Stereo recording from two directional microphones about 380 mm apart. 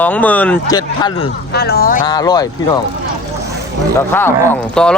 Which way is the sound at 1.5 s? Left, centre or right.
Left.